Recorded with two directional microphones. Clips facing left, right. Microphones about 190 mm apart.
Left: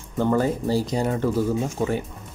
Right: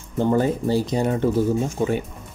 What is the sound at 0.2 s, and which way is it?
Speech, 25° right (ahead or behind).